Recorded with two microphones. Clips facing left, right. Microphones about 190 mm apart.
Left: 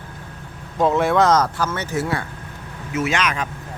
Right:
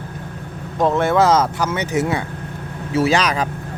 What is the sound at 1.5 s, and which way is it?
Speech, 15° right (ahead or behind).